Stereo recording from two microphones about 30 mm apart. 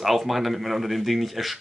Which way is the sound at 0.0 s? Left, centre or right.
Centre.